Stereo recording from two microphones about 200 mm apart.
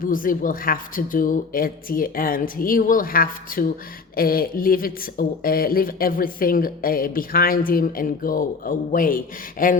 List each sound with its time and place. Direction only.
0.0 s a woman's voice: 45° left (ahead or behind)